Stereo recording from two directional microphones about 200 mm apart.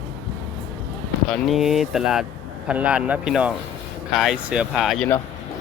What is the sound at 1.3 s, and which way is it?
Speech, centre (ahead or behind).